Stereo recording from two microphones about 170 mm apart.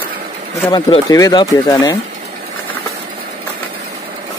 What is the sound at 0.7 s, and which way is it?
Speech, 25° left (ahead or behind).